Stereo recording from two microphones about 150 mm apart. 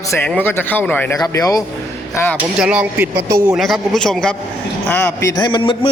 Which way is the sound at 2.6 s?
10° right (ahead or behind).